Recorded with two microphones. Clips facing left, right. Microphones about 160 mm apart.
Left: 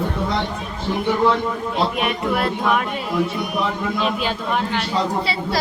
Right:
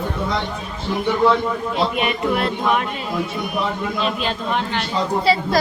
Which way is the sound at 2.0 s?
Centre (ahead or behind).